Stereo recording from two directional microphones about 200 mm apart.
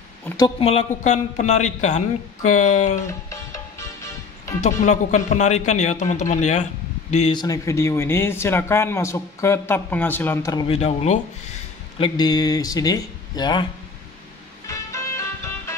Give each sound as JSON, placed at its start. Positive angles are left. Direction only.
{"t": 0.6, "sound": "speech", "side_deg": 30}
{"t": 3.1, "sound": "music", "side_deg": 15}
{"t": 4.6, "sound": "speech", "side_deg": 35}
{"t": 7.3, "sound": "speech", "side_deg": 15}
{"t": 12.0, "sound": "speech", "side_deg": 20}
{"t": 14.7, "sound": "music", "side_deg": 15}